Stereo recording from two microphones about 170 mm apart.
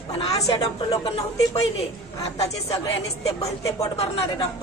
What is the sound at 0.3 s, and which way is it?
Speech, 20° left (ahead or behind).